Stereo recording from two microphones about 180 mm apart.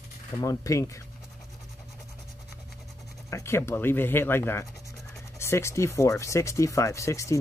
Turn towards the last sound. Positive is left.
turn(degrees=15)  # may be behind; listen again after turning